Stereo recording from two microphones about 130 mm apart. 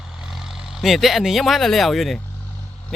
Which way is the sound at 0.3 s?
Centre (ahead or behind).